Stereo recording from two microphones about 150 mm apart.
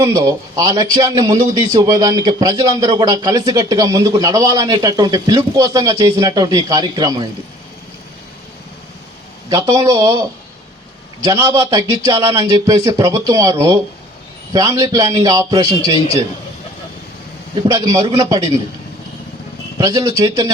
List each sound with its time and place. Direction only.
0.0 s a man's voice: 25° right (ahead or behind)
9.5 s a man's voice: 25° right (ahead or behind)
17.5 s a man's voice: 25° right (ahead or behind)
19.8 s a man's voice: 25° right (ahead or behind)